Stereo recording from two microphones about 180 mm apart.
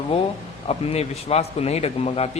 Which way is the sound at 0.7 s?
35° left (ahead or behind).